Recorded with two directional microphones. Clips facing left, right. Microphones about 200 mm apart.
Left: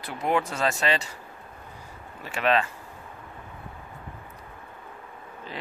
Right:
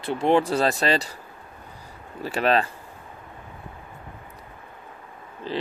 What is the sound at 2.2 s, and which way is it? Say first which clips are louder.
Speech: right 3 dB; 35° right (ahead or behind).